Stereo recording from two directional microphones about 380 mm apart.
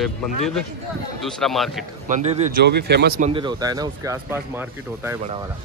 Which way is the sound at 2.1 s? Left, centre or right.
Centre.